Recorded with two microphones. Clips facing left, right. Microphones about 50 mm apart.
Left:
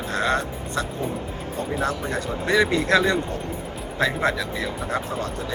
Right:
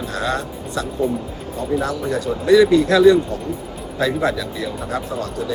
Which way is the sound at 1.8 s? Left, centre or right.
Left.